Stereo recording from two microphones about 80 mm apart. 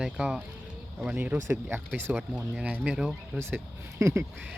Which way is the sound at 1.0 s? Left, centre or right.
Centre.